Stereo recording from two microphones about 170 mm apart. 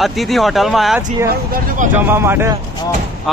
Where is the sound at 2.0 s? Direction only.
15° right (ahead or behind).